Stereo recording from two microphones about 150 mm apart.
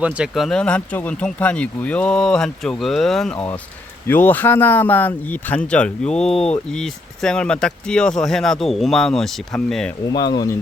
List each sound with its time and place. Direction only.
0.0 s speech: 5° right (ahead or behind)
10.1 s speech: 25° left (ahead or behind)